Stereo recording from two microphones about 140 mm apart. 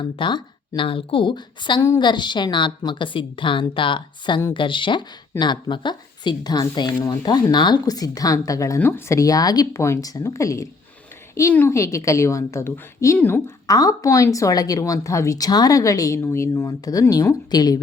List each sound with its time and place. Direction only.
0.0 s a woman's voice: 35° left (ahead or behind)